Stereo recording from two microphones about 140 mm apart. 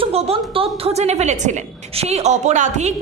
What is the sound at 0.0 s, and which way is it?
A woman's voice, 45° right (ahead or behind).